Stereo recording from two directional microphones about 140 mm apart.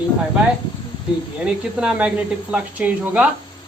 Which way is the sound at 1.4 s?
5° right (ahead or behind).